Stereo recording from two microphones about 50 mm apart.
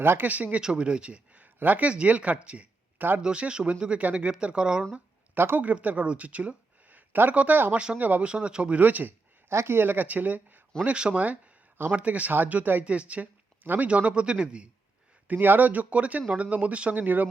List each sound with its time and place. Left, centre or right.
0.0 s speech: right
0.3 s speech: right
0.6 s speech: centre
5.3 s speech: right
5.6 s speech: right
8.2 s speech: right
8.8 s speech: right
9.5 s speech: right
10.8 s speech: centre; by 12.8 s right
12.8 s speech: right
15.3 s speech: right